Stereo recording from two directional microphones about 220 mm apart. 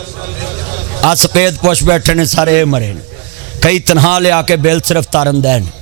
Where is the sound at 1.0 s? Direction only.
10° right (ahead or behind).